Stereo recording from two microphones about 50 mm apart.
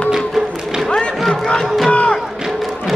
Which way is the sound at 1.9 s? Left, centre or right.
Left.